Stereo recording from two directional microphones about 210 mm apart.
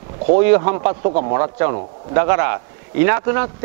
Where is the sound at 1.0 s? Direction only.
40° right (ahead or behind).